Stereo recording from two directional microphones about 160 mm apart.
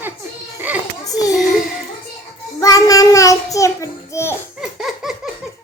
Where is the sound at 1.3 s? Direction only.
5° right (ahead or behind).